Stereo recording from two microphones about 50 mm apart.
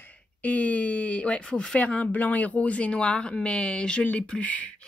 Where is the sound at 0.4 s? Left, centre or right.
Left.